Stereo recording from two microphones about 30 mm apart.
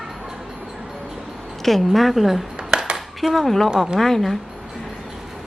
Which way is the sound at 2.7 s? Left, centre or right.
Right.